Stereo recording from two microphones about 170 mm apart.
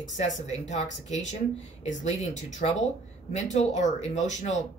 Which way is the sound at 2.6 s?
50° left (ahead or behind).